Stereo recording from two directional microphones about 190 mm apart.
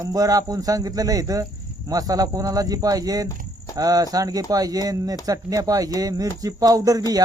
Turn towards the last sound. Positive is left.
turn(degrees=-20)  # may be behind; listen again after turning